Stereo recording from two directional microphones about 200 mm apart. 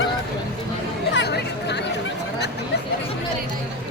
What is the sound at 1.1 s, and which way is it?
Chatter, 55° left (ahead or behind).